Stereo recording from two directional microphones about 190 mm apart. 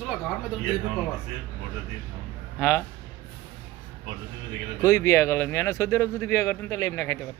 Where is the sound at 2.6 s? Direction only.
15° left (ahead or behind).